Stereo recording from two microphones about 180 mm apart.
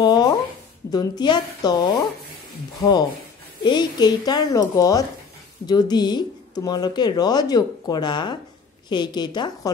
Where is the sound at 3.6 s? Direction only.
25° left (ahead or behind).